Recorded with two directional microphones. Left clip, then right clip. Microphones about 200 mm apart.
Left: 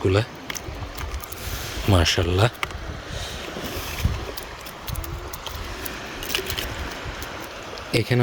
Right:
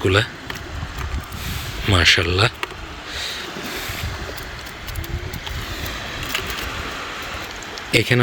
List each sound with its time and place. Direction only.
0.0 s speech: 15° left (ahead or behind)
1.9 s speech: 20° left (ahead or behind)
7.9 s speech: 5° left (ahead or behind)